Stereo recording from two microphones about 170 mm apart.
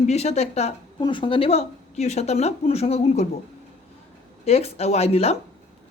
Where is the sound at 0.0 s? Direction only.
40° left (ahead or behind).